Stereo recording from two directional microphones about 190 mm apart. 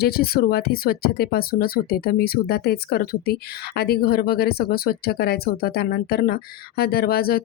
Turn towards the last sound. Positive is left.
turn(degrees=55)  # may be behind; listen again after turning